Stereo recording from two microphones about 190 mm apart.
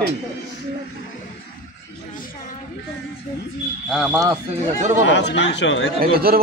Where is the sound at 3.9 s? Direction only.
5° right (ahead or behind).